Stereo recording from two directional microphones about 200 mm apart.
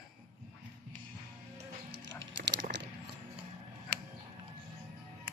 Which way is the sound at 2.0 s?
65° right (ahead or behind).